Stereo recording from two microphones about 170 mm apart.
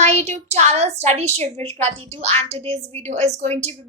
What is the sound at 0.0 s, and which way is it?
A woman's voice, 40° right (ahead or behind).